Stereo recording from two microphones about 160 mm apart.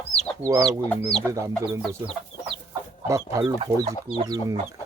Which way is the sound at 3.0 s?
20° right (ahead or behind).